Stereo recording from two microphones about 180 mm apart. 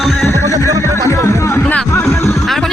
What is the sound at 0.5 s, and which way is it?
Speech, 15° right (ahead or behind).